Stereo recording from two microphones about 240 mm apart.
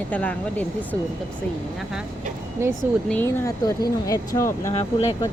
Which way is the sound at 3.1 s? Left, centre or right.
Centre.